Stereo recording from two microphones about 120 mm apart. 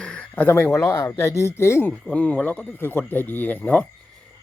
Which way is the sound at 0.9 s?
30° left (ahead or behind).